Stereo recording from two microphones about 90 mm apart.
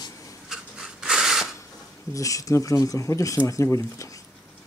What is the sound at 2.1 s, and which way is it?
Speech, 40° left (ahead or behind).